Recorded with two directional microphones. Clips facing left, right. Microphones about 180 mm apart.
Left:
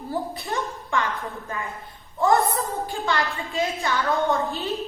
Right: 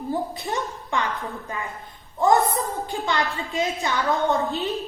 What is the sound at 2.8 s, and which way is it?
A woman's voice, 20° right (ahead or behind).